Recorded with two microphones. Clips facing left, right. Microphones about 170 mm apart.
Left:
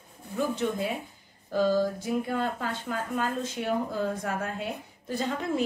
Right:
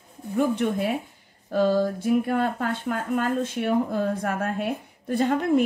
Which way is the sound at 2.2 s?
55° right (ahead or behind).